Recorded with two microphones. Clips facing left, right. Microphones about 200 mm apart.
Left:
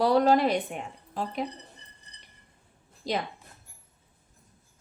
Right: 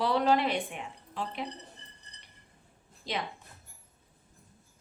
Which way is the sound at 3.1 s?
40° left (ahead or behind).